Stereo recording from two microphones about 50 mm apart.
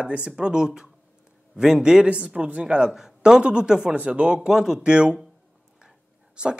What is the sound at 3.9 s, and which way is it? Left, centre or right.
Speech, right.